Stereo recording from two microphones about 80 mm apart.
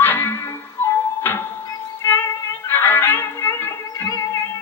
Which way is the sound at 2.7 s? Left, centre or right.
Left.